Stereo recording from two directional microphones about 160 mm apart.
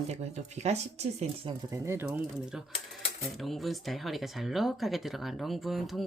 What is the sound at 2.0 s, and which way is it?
Speech, 5° right (ahead or behind).